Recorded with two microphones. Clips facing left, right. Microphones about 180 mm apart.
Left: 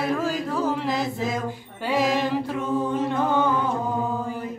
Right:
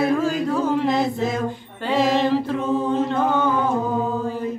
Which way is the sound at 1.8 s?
10° left (ahead or behind).